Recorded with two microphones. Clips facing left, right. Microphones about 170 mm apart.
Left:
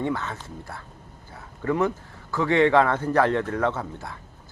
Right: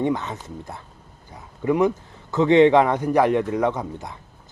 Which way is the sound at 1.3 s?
15° right (ahead or behind).